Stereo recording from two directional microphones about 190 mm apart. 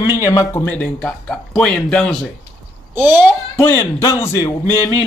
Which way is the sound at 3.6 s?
10° left (ahead or behind).